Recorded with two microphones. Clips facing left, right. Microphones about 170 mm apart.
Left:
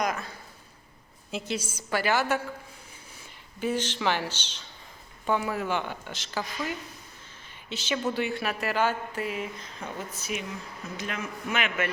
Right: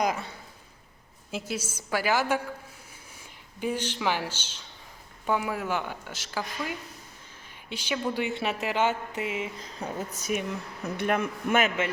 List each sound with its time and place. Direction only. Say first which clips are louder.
0.0 s speech: right 2 dB; 25° right (ahead or behind)
1.3 s a woman's voice: left 1 dB; 5° right (ahead or behind)
3.6 s a woman's voice: left 1 dB; 10° right (ahead or behind)
7.7 s a woman's voice: left 1 dB; 10° right (ahead or behind)
9.6 s speech: right 3 dB; 40° right (ahead or behind)
10.8 s a man's voice: right 8 dB; 60° right (ahead or behind)